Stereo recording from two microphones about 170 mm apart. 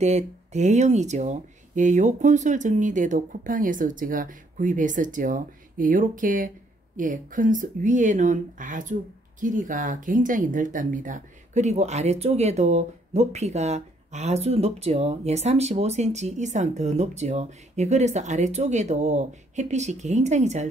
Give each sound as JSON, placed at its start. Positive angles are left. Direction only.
{"t": 0.0, "sound": "speech", "side_deg": -40}